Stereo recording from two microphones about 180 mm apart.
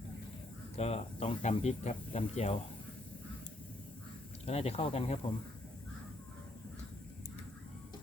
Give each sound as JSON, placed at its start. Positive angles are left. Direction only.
{"t": 0.8, "sound": "speech", "side_deg": 35}
{"t": 4.4, "sound": "speech", "side_deg": 35}